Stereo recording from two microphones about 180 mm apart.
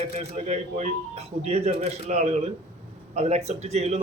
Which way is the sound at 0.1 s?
40° right (ahead or behind).